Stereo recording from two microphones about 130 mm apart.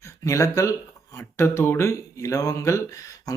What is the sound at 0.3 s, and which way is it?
Speech, 25° left (ahead or behind).